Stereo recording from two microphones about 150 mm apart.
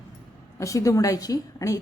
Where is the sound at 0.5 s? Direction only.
20° left (ahead or behind).